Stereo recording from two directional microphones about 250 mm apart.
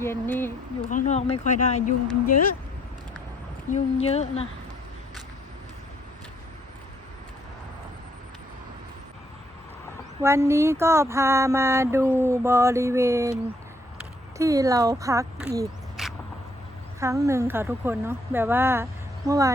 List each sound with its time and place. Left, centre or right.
0.0 s speech: centre
0.8 s speech: left
3.7 s speech: left
10.2 s a sound: centre
16.0 s vehicle: centre
17.0 s a sound: centre